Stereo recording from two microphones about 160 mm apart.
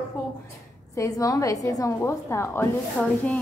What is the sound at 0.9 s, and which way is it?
A woman's voice, 20° left (ahead or behind).